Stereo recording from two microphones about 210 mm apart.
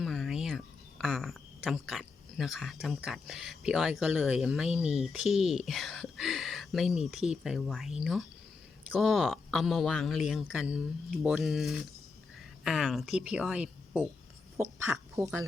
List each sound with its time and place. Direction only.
0.0 s speech: centre (ahead or behind)
15.1 s speech: 15° right (ahead or behind)